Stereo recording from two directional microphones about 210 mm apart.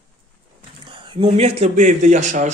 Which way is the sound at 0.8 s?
25° right (ahead or behind).